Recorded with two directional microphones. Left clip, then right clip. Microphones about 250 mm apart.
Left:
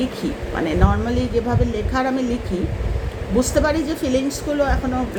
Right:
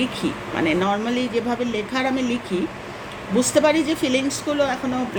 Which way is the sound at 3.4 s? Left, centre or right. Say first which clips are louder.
Right 1 dB; centre.